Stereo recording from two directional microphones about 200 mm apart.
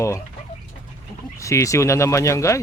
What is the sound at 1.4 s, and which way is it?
Speech, 15° left (ahead or behind).